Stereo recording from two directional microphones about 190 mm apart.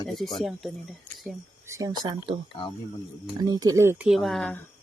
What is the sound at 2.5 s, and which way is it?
Speech, 25° left (ahead or behind).